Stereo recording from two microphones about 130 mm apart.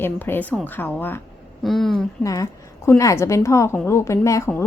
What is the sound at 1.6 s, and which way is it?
Speech, centre (ahead or behind).